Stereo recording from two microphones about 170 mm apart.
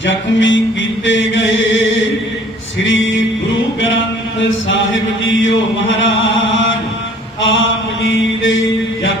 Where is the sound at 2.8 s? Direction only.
90° left.